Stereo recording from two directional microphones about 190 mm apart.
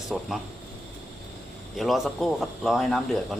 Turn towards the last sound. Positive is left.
turn(degrees=0)  # may be behind; listen again after turning